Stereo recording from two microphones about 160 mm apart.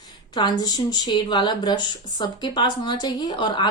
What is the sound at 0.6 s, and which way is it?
Speech, 25° left (ahead or behind).